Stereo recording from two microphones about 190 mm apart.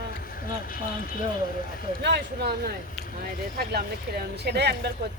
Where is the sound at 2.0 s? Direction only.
60° right (ahead or behind).